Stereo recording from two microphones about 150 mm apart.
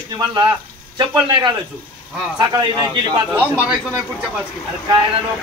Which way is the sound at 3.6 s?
10° right (ahead or behind).